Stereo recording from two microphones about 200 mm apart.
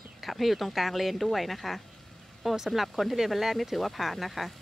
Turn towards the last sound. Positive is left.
turn(degrees=0)  # may be behind; listen again after turning